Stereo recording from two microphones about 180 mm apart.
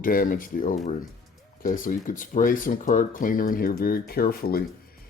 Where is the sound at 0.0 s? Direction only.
50° left (ahead or behind).